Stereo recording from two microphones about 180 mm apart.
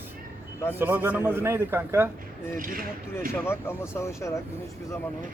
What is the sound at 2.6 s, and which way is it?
Speech, 50° right (ahead or behind).